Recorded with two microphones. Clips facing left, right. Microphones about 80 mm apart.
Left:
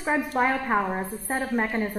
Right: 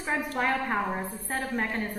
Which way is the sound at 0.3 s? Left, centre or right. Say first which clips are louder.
Left 3 dB; centre.